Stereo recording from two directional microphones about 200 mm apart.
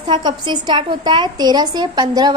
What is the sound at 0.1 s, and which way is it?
A woman's voice, 20° right (ahead or behind).